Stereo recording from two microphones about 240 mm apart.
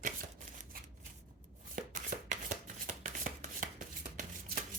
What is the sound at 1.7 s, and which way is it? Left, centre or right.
Shuffling cards, right.